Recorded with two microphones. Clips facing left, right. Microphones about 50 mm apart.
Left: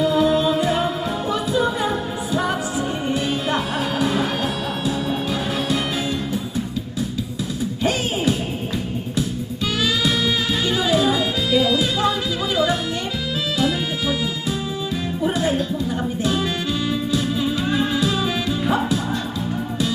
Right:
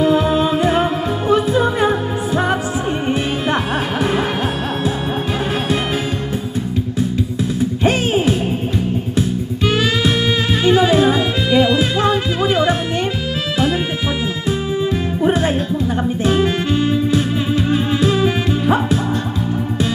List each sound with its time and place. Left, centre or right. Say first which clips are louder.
0.0 s music: right 3 dB; right
7.9 s music: right 5 dB; right
9.6 s music: right 4 dB; right
15.2 s music: right 4 dB; right